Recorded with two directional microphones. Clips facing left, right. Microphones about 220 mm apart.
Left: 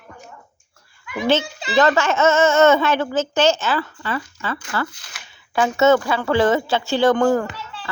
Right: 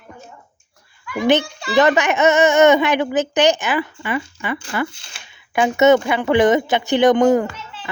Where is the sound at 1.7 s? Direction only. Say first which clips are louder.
Right 2 dB; 15° right (ahead or behind).